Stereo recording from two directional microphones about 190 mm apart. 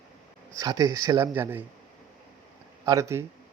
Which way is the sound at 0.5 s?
20° right (ahead or behind).